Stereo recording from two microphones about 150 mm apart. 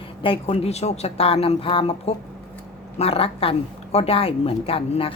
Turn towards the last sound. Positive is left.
turn(degrees=40)  # may be behind; listen again after turning